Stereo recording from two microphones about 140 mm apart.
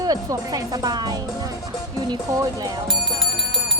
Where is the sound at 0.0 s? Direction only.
25° right (ahead or behind).